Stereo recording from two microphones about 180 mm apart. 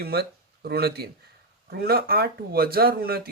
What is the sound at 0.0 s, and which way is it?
Speech, 60° right (ahead or behind).